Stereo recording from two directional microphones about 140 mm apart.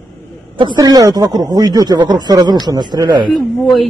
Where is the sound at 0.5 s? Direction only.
30° right (ahead or behind).